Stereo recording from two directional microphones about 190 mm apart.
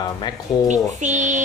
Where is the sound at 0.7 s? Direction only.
40° right (ahead or behind).